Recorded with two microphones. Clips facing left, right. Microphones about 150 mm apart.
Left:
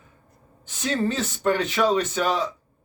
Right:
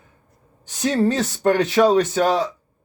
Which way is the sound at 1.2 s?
55° right (ahead or behind).